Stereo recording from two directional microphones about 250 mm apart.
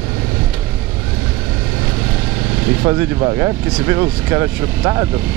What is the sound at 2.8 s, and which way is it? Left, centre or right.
Speech, centre.